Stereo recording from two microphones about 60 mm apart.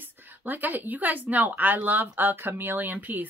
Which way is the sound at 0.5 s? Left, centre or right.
Right.